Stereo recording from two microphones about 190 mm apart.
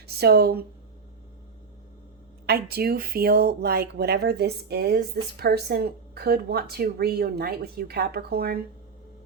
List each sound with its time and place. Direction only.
0.2 s speech: 55° right (ahead or behind)
2.5 s speech: 55° right (ahead or behind)